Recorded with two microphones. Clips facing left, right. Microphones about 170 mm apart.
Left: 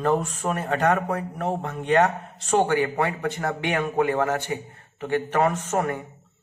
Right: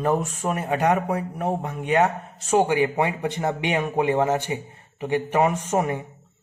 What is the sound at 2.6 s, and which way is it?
A man's voice, 15° right (ahead or behind).